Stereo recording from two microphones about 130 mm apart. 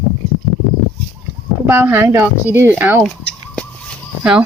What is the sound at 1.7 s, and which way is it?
A woman's voice, 20° right (ahead or behind).